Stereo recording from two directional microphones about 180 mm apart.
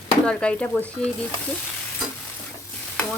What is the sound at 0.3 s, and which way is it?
Speech, 5° left (ahead or behind).